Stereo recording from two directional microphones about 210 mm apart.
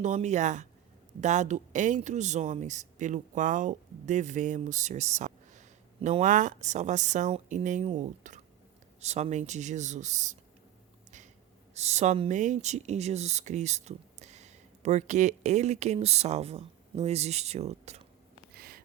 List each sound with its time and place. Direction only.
0.0 s speech: 35° right (ahead or behind)
11.7 s speech: 30° right (ahead or behind)
18.5 s a sound: 45° right (ahead or behind)